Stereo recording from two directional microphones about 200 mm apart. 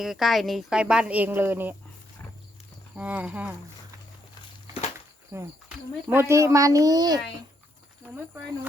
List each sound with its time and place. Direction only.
0.0 s speech: centre (ahead or behind)
2.9 s speech: 5° right (ahead or behind)
5.3 s speech: 10° right (ahead or behind)